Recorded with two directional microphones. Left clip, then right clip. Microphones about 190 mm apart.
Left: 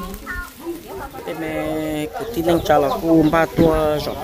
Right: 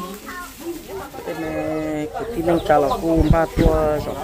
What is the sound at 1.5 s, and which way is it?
Speech, 20° left (ahead or behind).